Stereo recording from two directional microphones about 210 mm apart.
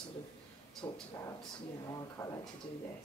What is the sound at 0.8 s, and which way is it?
Speech, 15° left (ahead or behind).